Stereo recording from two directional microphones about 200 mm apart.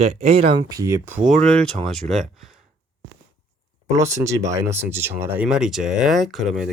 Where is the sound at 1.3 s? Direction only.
5° left (ahead or behind).